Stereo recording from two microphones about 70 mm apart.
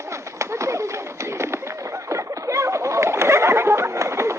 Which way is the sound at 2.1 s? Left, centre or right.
Right.